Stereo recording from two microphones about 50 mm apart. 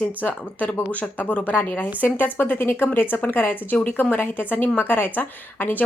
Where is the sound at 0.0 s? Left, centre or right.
Left.